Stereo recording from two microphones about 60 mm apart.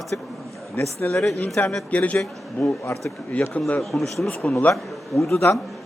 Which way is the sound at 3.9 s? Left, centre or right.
Centre.